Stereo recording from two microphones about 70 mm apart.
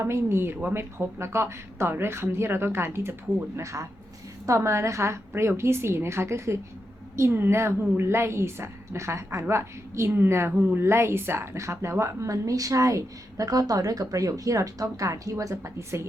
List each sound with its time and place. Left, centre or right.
0.0 s a woman's voice: right
3.6 s a woman's voice: right